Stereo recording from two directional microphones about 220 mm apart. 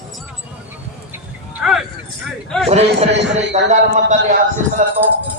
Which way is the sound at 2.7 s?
30° right (ahead or behind).